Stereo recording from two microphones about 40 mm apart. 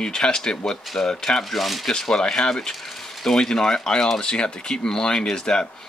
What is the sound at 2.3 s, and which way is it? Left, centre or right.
Speech, centre.